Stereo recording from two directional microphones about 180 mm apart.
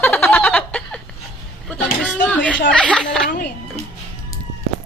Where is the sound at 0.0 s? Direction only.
10° left (ahead or behind).